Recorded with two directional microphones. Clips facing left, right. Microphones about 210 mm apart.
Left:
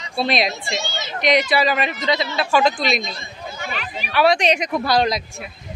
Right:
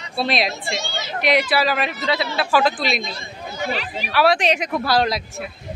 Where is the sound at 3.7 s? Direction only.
35° right (ahead or behind).